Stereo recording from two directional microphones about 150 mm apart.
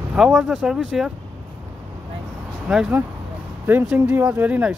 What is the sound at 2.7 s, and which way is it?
Speech, 10° right (ahead or behind).